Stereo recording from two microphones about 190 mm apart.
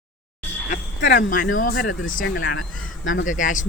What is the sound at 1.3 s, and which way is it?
Speech, 45° left (ahead or behind).